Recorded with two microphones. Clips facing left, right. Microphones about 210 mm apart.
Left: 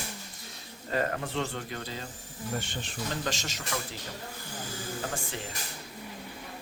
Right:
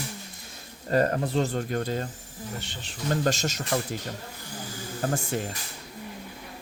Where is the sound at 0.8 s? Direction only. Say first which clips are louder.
Right 7 dB; 40° right (ahead or behind).